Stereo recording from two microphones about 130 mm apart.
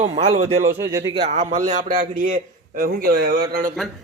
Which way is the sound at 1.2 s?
70° right (ahead or behind).